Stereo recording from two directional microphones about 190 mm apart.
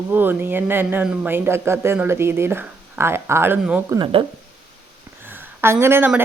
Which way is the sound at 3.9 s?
25° right (ahead or behind).